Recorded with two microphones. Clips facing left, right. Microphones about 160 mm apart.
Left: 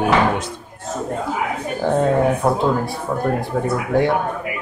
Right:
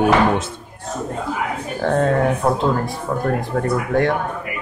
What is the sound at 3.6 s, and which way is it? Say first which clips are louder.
Speech: even; 5° left (ahead or behind).